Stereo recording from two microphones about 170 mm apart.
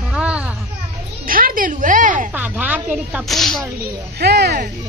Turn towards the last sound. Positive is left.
turn(degrees=-70)  # may be behind; listen again after turning